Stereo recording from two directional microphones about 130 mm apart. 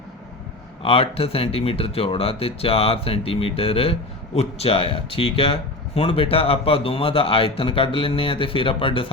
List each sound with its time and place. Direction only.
0.8 s speech: 45° left (ahead or behind)